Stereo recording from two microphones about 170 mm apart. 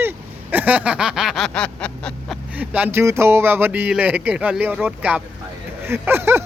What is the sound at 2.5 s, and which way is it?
Speech, 10° right (ahead or behind).